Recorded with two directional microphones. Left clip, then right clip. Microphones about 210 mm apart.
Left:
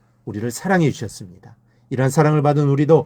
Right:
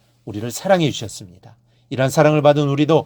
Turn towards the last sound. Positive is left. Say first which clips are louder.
# even
turn(degrees=-15)  # may be behind; listen again after turning